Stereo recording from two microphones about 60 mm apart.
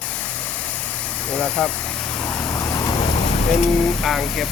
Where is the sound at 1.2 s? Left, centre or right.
Centre.